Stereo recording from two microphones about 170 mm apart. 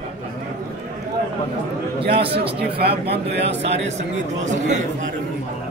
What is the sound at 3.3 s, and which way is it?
Speech, 90° right.